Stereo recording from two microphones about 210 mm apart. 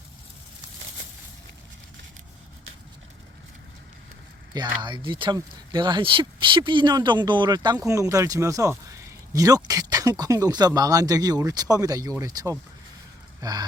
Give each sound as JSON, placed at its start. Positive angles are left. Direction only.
{"t": 4.5, "sound": "speech", "side_deg": -20}